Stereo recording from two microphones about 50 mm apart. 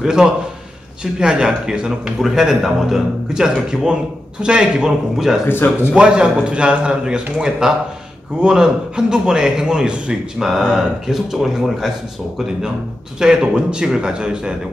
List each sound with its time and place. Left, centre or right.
0.0 s a man's voice: centre
3.7 s a man's voice: centre
5.1 s speech: centre
5.5 s speech: left
5.9 s a man's voice: centre
13.2 s a man's voice: centre